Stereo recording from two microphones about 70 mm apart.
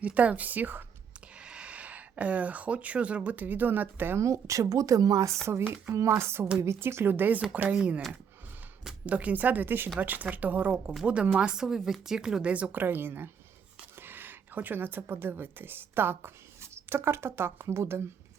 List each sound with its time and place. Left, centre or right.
0.0 s speech: right
1.4 s speech: centre; by 4.2 s right
4.2 s speech: right
5.5 s speech: right; by 8.0 s centre
9.0 s speech: right
12.8 s speech: right